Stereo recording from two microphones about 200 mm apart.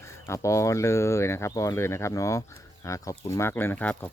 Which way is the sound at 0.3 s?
15° left (ahead or behind).